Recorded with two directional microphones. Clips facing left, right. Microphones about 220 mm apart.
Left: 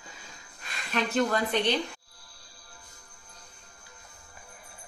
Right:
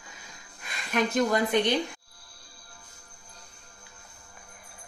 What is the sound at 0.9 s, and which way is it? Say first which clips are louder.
Speech: right 2 dB; 15° right (ahead or behind).